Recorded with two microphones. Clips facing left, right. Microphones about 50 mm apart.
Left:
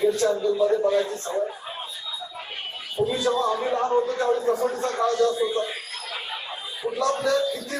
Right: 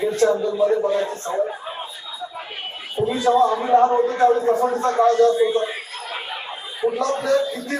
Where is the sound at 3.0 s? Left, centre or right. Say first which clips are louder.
Right 2 dB; right.